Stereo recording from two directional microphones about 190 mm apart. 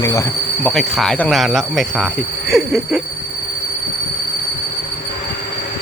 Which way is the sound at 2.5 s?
Centre (ahead or behind).